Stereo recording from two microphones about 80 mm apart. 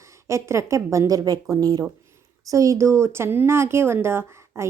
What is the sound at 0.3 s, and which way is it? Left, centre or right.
Speech, right.